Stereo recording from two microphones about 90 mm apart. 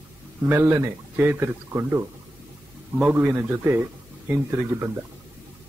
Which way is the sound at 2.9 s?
15° right (ahead or behind).